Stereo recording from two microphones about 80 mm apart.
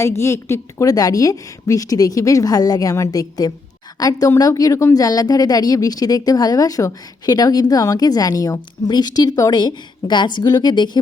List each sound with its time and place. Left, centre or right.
0.0 s a woman's voice: left
0.9 s a woman's voice: left